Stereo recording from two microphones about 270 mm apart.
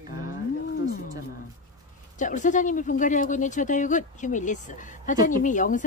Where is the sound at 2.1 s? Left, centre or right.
Left.